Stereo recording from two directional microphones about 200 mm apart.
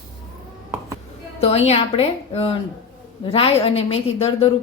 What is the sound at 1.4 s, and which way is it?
A woman's voice, 30° left (ahead or behind).